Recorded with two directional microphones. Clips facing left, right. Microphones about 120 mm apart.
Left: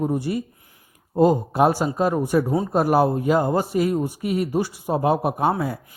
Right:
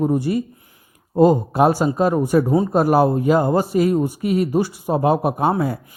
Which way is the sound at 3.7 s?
90° right.